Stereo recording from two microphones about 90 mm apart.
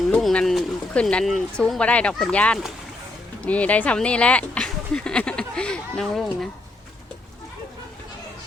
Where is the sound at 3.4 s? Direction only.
15° left (ahead or behind).